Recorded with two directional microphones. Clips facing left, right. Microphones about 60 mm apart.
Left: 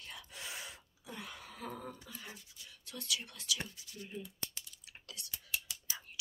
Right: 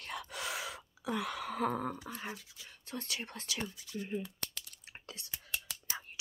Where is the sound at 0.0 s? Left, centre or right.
Right.